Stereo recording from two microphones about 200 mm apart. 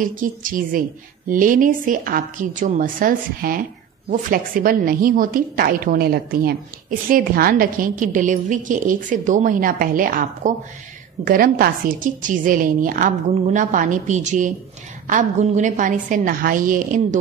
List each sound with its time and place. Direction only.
0.0 s a woman's voice: 40° right (ahead or behind)